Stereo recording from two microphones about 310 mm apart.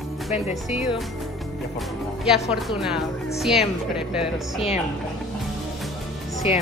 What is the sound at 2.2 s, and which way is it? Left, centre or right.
Speech, centre.